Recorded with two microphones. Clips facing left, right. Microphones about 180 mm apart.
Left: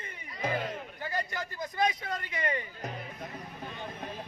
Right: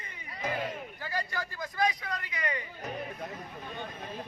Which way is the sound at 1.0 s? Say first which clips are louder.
Left 1 dB; 20° left (ahead or behind).